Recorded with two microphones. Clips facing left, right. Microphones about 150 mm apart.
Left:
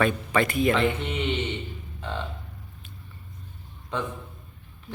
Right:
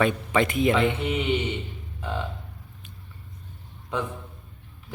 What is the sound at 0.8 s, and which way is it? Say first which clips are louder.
Speech: right 1 dB; 5° right (ahead or behind).